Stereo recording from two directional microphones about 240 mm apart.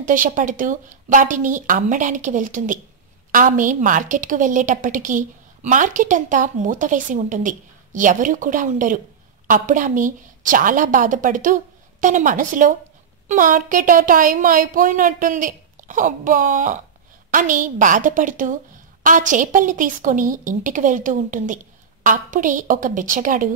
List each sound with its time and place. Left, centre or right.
0.0 s a woman's voice: right